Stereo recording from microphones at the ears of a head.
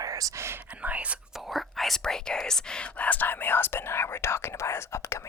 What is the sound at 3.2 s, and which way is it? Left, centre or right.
Speech, left.